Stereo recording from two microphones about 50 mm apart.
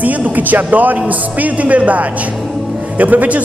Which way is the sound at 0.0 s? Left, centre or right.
Right.